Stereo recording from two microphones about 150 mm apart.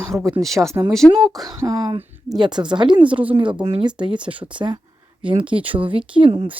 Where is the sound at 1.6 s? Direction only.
25° right (ahead or behind).